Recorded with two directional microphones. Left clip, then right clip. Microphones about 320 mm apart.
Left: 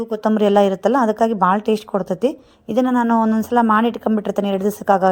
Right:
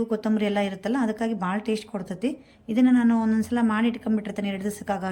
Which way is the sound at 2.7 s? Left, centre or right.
Left.